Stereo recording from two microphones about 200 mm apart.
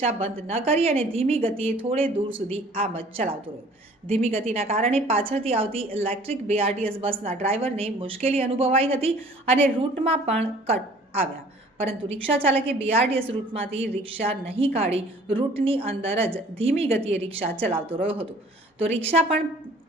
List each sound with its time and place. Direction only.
0.0 s a woman's voice: 30° right (ahead or behind)
17.7 s speech: 10° right (ahead or behind)
17.9 s a woman's voice: 30° right (ahead or behind)